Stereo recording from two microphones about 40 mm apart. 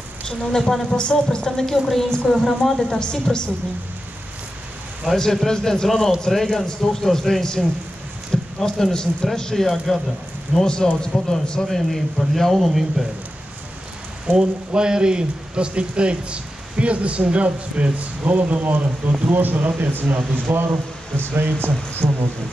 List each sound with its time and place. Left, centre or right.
0.3 s a woman's voice: centre
1.7 s speech: centre
2.8 s a woman's voice: centre
5.1 s speech: centre
8.3 s a sound: centre
8.9 s a woman's voice: centre
11.6 s speech: centre
14.2 s speech: right
20.5 s speech: right
22.0 s speech: right